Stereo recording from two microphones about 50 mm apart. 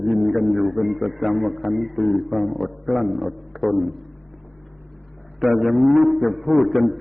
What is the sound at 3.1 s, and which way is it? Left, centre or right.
Speech, centre.